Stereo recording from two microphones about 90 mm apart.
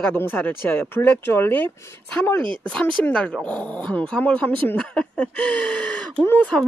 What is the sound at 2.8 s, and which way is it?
Speech, 10° left (ahead or behind).